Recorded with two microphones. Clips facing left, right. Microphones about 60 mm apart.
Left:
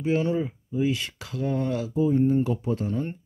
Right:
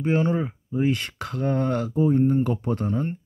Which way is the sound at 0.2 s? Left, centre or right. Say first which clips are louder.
Right 2 dB; right.